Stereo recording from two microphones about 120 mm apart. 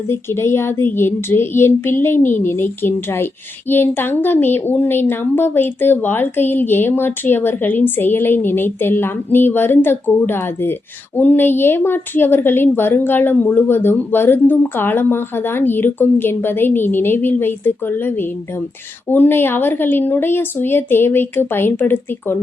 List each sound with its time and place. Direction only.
0.1 s a woman's voice: 20° left (ahead or behind)